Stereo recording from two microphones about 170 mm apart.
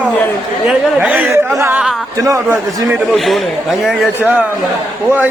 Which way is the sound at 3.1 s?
Centre (ahead or behind).